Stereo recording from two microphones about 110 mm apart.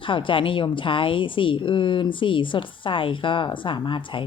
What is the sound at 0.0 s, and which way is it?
Speech, 50° left (ahead or behind).